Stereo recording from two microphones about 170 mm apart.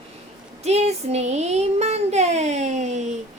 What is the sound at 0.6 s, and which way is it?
Speech, 40° right (ahead or behind).